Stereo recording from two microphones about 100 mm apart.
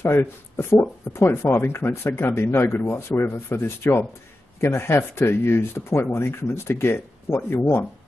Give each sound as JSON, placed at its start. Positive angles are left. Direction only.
{"t": 0.0, "sound": "speech", "side_deg": 25}